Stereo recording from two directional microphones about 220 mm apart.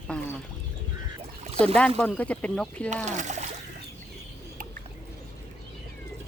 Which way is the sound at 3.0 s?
30° right (ahead or behind).